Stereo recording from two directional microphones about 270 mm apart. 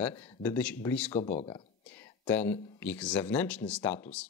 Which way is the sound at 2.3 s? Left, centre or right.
Centre.